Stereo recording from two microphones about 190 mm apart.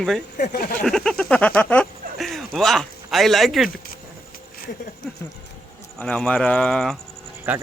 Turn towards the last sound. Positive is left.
turn(degrees=-10)  # may be behind; listen again after turning